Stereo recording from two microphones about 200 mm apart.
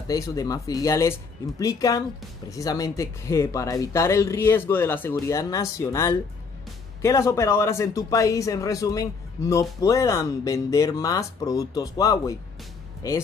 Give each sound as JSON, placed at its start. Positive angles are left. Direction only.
{"t": 0.1, "sound": "a man's voice", "side_deg": 15}